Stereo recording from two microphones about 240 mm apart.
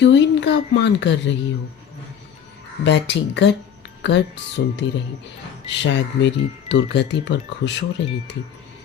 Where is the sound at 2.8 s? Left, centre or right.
Left.